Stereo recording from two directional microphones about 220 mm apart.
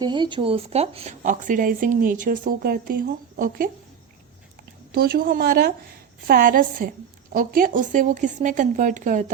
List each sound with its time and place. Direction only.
0.0 s speech: 20° right (ahead or behind); by 3.7 s 40° right (ahead or behind)
4.9 s speech: 45° right (ahead or behind)